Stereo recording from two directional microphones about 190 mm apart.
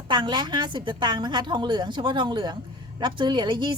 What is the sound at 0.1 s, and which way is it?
A woman's voice, 25° right (ahead or behind).